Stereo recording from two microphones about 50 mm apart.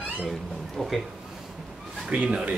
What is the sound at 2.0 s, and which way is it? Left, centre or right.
Speech, right.